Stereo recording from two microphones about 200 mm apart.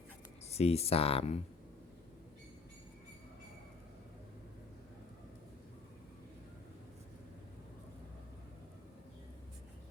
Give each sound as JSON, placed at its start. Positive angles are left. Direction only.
{"t": 0.5, "sound": "speech", "side_deg": 30}